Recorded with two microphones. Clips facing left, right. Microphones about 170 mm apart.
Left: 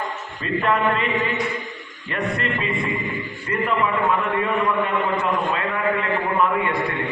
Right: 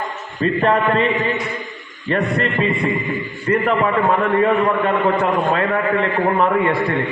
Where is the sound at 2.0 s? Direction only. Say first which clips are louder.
Right 6 dB; 35° right (ahead or behind).